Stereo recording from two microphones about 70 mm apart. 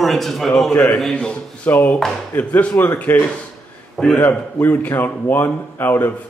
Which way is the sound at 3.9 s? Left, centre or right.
Centre.